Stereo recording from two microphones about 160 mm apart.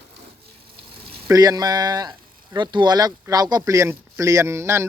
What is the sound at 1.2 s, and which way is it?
Speech, 20° right (ahead or behind).